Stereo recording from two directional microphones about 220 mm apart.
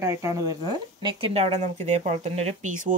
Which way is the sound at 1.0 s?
25° right (ahead or behind).